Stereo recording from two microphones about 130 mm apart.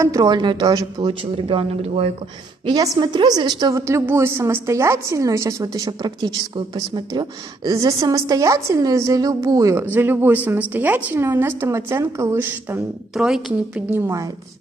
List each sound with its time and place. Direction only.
0.0 s speech: 25° right (ahead or behind); by 2.0 s 50° right (ahead or behind)
2.6 s speech: 30° right (ahead or behind)
3.8 s a woman's voice: 20° right (ahead or behind)
9.8 s a woman's voice: 15° right (ahead or behind)
13.1 s speech: 5° right (ahead or behind)
13.9 s a woman's voice: 20° right (ahead or behind)